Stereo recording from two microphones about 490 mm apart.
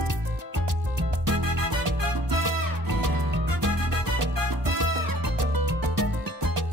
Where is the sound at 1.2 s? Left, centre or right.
Right.